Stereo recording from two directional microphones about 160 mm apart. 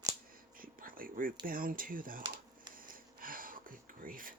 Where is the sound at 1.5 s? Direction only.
60° right (ahead or behind).